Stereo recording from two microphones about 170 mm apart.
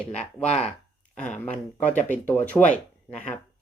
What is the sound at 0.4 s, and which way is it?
Speech, 40° left (ahead or behind).